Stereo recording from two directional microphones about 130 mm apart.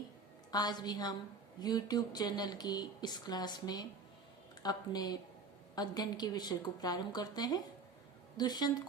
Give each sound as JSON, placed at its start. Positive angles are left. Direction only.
{"t": 0.5, "sound": "speech", "side_deg": 30}